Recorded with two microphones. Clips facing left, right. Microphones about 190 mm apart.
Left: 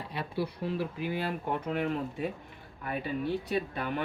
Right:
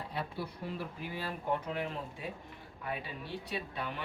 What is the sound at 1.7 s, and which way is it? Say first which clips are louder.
Speech: left 7 dB; 60° left (ahead or behind).